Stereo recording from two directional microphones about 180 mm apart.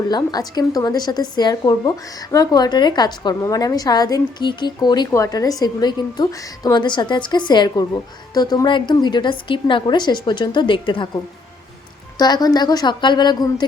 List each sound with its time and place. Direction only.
0.1 s a woman's voice: 20° left (ahead or behind)